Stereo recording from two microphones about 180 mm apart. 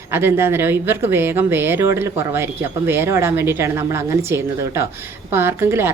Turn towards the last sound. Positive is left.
turn(degrees=-15)  # may be behind; listen again after turning